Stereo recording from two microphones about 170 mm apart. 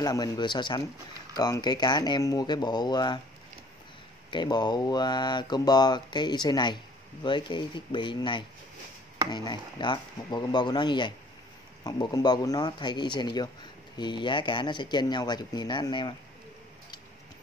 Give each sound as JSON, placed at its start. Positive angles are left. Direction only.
{"t": 0.0, "sound": "speech", "side_deg": 25}
{"t": 4.3, "sound": "speech", "side_deg": 25}